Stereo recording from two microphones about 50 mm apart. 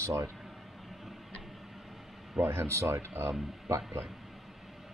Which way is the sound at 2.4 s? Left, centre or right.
Right.